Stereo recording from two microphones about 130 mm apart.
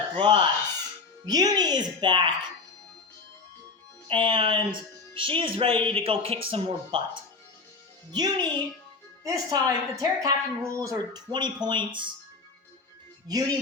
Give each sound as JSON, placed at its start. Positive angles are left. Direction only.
{"t": 0.2, "sound": "speech", "side_deg": -35}
{"t": 4.1, "sound": "speech", "side_deg": -40}
{"t": 8.1, "sound": "a woman's voice", "side_deg": -30}
{"t": 13.3, "sound": "a woman's voice", "side_deg": -30}